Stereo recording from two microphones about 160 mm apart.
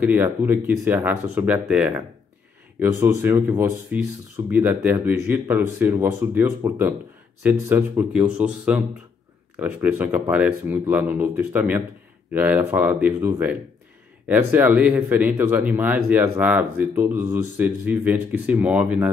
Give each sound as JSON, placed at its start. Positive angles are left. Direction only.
{"t": 0.0, "sound": "speech", "side_deg": -10}